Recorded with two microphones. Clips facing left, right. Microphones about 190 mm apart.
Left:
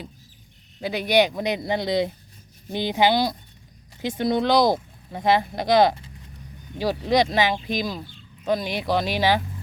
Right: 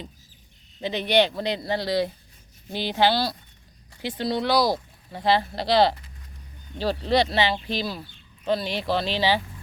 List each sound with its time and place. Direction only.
0.8 s speech: 10° left (ahead or behind)